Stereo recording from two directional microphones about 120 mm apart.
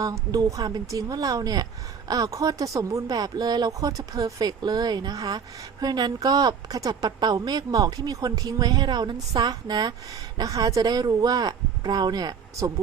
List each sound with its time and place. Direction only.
0.0 s a woman's voice: 30° right (ahead or behind)